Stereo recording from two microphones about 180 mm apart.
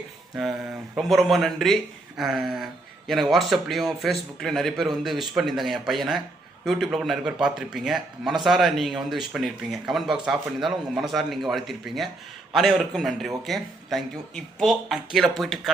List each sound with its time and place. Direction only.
0.9 s a man's voice: centre (ahead or behind)